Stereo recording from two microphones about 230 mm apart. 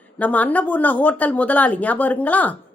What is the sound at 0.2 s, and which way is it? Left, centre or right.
Speech, centre.